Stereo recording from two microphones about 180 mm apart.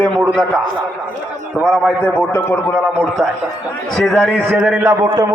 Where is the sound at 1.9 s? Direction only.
10° left (ahead or behind).